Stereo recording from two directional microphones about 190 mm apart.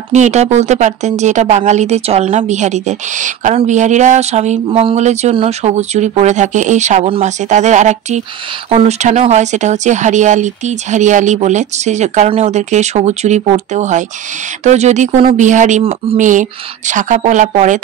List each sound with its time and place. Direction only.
0.1 s a woman's voice: 35° right (ahead or behind)